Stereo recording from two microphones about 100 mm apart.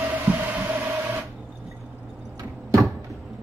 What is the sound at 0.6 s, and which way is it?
Printer, 25° right (ahead or behind).